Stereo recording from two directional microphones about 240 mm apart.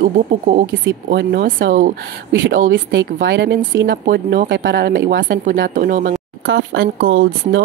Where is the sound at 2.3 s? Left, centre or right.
Right.